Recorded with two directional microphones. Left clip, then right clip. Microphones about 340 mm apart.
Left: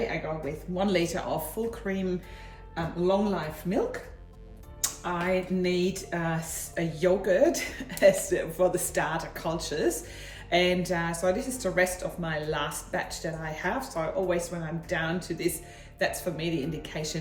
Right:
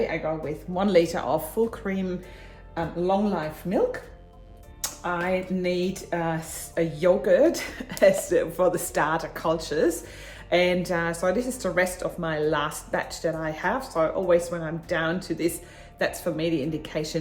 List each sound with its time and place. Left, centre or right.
0.8 s speech: centre